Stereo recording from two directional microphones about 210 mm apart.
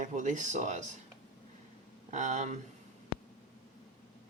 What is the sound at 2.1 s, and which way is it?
Speech, 35° right (ahead or behind).